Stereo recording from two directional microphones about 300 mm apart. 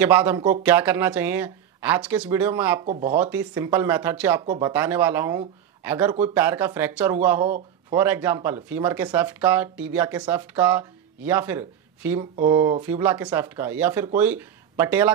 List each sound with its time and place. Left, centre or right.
0.0 s speech: centre
2.9 s speech: right
3.2 s speech: centre